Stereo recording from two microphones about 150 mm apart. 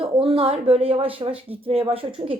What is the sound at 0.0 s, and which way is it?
A woman's voice, 40° right (ahead or behind).